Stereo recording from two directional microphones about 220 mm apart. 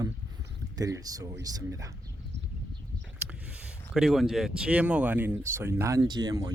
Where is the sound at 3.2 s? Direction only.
5° right (ahead or behind).